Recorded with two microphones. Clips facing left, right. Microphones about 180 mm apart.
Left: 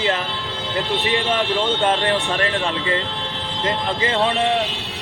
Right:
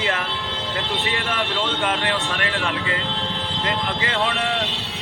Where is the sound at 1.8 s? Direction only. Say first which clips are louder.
Left 4 dB; 30° left (ahead or behind).